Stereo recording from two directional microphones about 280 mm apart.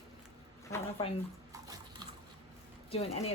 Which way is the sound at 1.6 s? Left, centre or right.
Centre.